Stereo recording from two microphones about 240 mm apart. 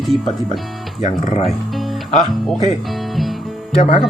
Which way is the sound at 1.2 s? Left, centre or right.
Left.